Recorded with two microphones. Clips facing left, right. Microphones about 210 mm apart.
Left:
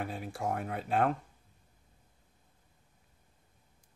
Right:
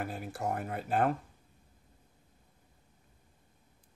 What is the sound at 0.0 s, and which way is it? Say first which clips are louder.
Speech: even; centre (ahead or behind).